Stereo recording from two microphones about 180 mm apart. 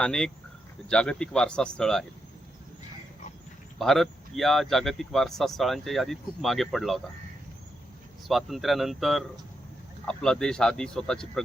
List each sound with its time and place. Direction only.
0.0 s speech: 5° left (ahead or behind)
3.8 s speech: centre (ahead or behind)
8.3 s speech: centre (ahead or behind)